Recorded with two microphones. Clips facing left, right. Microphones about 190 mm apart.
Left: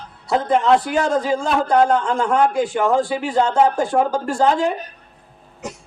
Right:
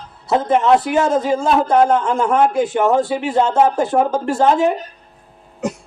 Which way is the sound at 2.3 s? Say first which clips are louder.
Right 2 dB; 25° right (ahead or behind).